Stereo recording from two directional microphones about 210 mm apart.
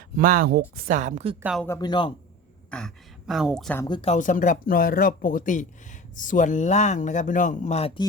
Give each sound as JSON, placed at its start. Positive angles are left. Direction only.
{"t": 0.2, "sound": "a woman's voice", "side_deg": -40}
{"t": 1.4, "sound": "speech", "side_deg": -5}
{"t": 1.6, "sound": "speech", "side_deg": 15}
{"t": 2.6, "sound": "a woman's voice", "side_deg": 5}
{"t": 3.8, "sound": "speech", "side_deg": 20}
{"t": 4.1, "sound": "speech", "side_deg": 40}